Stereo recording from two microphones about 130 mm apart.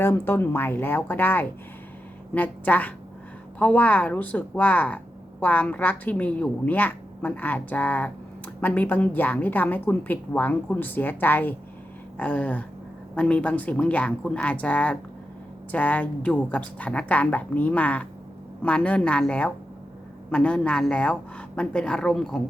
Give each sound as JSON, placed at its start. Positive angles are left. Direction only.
{"t": 0.0, "sound": "a woman's voice", "side_deg": 20}